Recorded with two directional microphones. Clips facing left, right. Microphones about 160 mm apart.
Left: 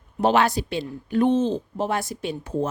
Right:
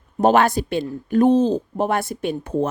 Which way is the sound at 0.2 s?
50° right (ahead or behind).